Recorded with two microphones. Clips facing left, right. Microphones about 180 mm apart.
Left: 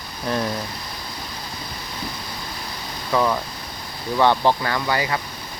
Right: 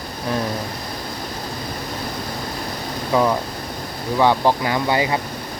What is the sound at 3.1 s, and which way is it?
Speech, 15° right (ahead or behind).